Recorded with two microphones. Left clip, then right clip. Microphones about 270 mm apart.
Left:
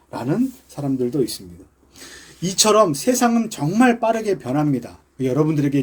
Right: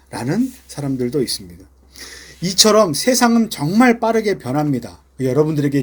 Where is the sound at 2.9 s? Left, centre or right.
Centre.